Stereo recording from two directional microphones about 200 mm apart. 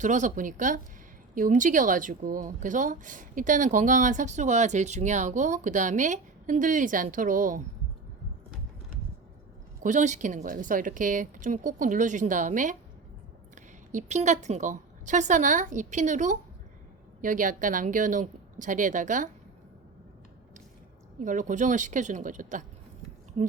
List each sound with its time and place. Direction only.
0.0 s a woman's voice: 40° right (ahead or behind)
9.8 s a woman's voice: 40° right (ahead or behind)
21.2 s a woman's voice: 40° right (ahead or behind)